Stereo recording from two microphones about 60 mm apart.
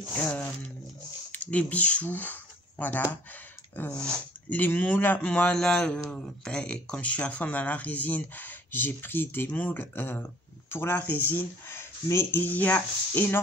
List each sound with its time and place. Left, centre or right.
0.1 s a man's voice: left
12.4 s speech: left